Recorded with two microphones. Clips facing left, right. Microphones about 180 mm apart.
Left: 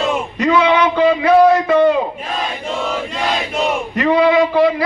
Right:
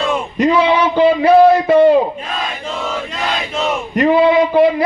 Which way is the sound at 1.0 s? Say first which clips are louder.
Right 3 dB; 30° right (ahead or behind).